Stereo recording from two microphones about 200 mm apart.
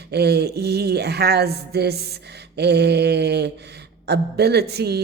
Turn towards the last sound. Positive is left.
turn(degrees=-55)  # may be behind; listen again after turning